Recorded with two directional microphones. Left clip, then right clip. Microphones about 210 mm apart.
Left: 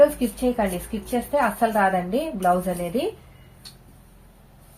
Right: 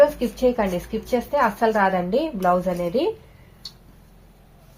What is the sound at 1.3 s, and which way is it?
A woman's voice, 45° right (ahead or behind).